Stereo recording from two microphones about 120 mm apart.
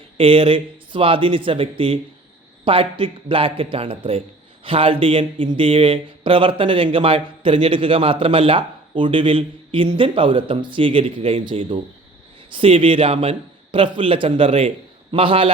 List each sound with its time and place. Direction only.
0.2 s a man's voice: 50° right (ahead or behind)